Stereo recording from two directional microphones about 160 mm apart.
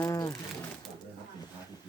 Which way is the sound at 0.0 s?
20° left (ahead or behind).